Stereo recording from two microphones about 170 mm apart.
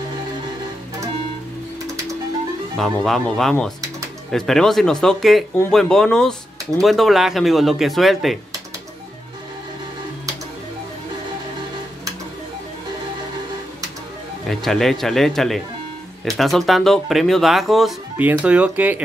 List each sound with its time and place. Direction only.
2.8 s speech: 5° left (ahead or behind)
14.5 s speech: centre (ahead or behind)